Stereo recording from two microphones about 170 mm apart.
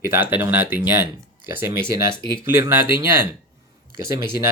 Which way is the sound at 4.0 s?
25° left (ahead or behind).